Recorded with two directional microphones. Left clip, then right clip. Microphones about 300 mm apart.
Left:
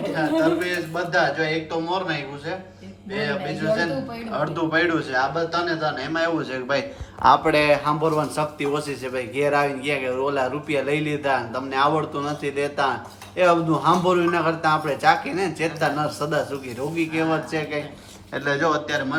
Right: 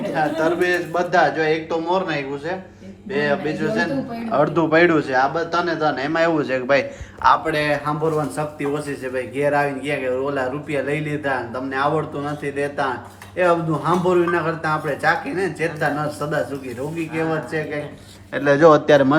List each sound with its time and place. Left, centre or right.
0.6 s a man's voice: centre
7.2 s speech: left
7.6 s a man's voice: centre